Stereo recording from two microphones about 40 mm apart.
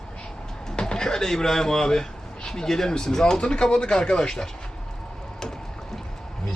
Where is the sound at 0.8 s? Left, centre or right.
Centre.